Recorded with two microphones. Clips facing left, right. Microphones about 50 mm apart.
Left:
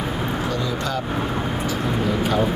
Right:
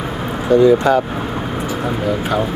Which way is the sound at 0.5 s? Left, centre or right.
Right.